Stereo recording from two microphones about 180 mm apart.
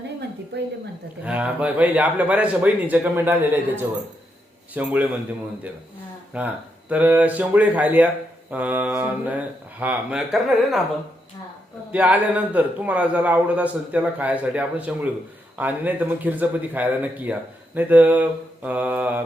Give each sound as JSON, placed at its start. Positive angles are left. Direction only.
{"t": 0.5, "sound": "a woman's voice", "side_deg": -70}
{"t": 1.2, "sound": "speech", "side_deg": -5}
{"t": 6.3, "sound": "speech", "side_deg": -5}
{"t": 11.9, "sound": "speech", "side_deg": -10}